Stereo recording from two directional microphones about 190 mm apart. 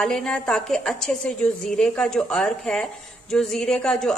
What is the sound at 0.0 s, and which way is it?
A woman's voice, 5° left (ahead or behind).